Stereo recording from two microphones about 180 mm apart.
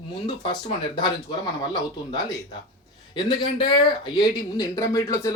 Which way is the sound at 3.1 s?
25° left (ahead or behind).